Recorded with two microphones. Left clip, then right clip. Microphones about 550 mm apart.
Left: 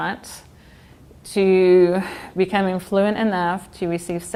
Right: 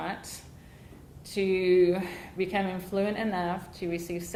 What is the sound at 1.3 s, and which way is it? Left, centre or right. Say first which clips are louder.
Speech: left 10 dB; left.